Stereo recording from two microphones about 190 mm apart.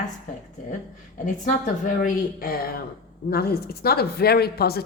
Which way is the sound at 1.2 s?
45° left (ahead or behind).